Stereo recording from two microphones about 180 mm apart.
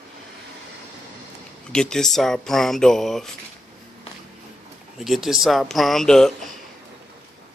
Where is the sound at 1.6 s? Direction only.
5° left (ahead or behind).